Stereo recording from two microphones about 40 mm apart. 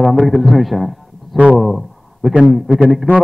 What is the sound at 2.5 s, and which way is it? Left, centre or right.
Speech, centre.